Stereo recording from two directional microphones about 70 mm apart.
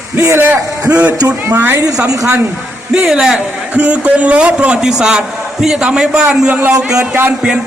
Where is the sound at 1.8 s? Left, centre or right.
Right.